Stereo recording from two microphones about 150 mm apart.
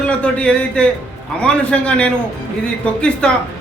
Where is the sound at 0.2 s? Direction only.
5° left (ahead or behind).